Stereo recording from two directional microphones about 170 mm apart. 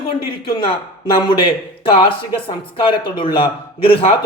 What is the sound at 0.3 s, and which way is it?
A man's voice, 30° left (ahead or behind).